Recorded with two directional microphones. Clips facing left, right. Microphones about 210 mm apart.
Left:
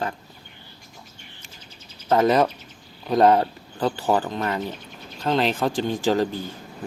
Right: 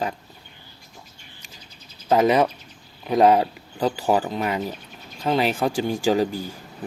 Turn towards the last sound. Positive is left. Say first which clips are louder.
# right 1 dB
turn(degrees=-10)  # may be behind; listen again after turning